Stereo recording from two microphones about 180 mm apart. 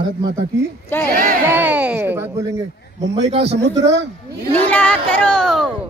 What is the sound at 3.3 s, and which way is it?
Speech, 35° right (ahead or behind).